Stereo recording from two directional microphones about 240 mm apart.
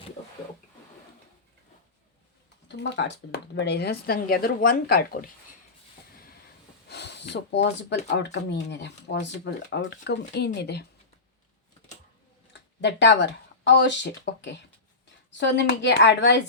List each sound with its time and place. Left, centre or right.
2.6 s speech: left
6.8 s speech: left
12.5 s speech: left